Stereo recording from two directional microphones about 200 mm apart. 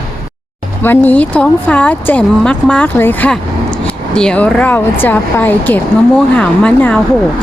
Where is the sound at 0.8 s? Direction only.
10° left (ahead or behind).